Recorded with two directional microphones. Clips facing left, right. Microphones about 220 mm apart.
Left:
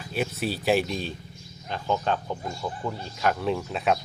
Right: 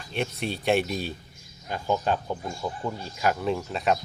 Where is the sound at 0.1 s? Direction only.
5° left (ahead or behind).